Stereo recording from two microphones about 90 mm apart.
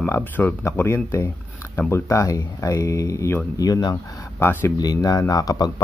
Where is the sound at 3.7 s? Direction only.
55° left (ahead or behind).